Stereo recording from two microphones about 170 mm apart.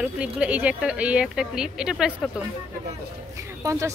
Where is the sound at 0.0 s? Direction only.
5° right (ahead or behind).